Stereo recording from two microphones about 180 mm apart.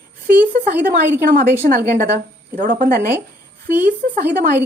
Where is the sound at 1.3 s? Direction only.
60° right (ahead or behind).